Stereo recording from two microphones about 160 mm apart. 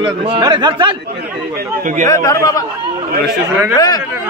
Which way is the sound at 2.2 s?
20° left (ahead or behind).